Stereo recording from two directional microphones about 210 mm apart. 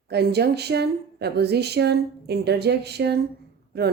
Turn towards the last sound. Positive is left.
turn(degrees=-50)  # may be behind; listen again after turning